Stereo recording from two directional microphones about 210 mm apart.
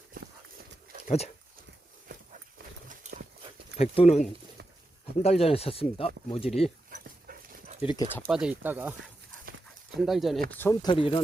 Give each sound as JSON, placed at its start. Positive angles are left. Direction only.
{"t": 1.0, "sound": "speech", "side_deg": 30}
{"t": 2.9, "sound": "clip-clop", "side_deg": -35}
{"t": 3.8, "sound": "speech", "side_deg": 30}
{"t": 6.9, "sound": "dog", "side_deg": -35}
{"t": 7.8, "sound": "speech", "side_deg": 25}
{"t": 8.3, "sound": "speech", "side_deg": -5}
{"t": 10.0, "sound": "speech", "side_deg": 0}
{"t": 10.6, "sound": "speech", "side_deg": 10}
{"t": 10.9, "sound": "speech", "side_deg": 25}